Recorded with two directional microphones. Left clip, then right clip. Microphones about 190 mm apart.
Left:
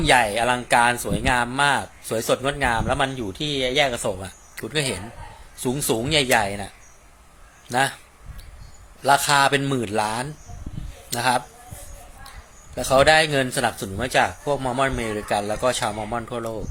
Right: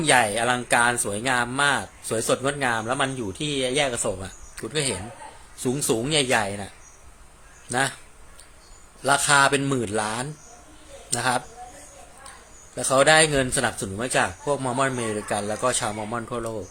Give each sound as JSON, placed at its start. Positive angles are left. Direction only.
{"t": 0.0, "sound": "speech", "side_deg": 0}
{"t": 9.0, "sound": "speech", "side_deg": 0}
{"t": 12.7, "sound": "speech", "side_deg": 0}